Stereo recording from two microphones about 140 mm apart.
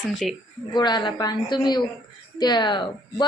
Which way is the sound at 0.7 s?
30° left (ahead or behind).